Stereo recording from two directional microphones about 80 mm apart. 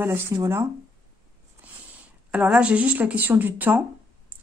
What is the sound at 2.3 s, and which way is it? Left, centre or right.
Speech, centre.